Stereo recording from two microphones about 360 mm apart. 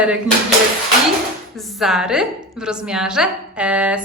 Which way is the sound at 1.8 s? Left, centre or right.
Centre.